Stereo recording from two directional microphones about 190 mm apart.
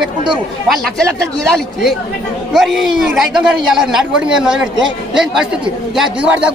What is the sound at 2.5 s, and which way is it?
A man's voice, centre (ahead or behind).